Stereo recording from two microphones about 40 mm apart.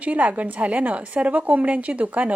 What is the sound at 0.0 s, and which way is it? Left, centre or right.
A woman's voice, right.